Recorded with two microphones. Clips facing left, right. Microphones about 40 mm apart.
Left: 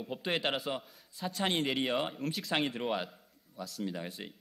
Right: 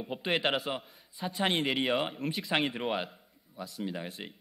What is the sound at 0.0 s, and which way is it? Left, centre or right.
A man's voice, centre.